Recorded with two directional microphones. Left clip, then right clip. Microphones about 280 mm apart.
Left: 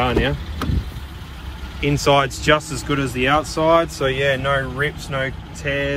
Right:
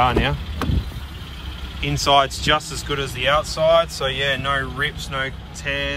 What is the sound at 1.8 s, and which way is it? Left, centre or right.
Speech, centre.